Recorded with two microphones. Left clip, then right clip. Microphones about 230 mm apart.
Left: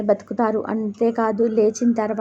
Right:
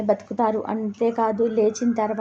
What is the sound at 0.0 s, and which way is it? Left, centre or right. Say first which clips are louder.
A woman's voice: left 2 dB; centre.